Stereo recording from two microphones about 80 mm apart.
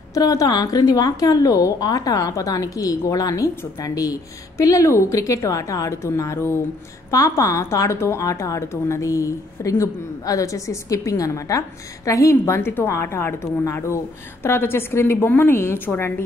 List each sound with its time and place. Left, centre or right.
0.1 s a woman's voice: left